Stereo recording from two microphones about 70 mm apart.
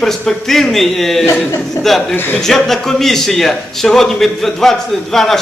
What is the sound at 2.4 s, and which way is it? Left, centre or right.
Speech, centre.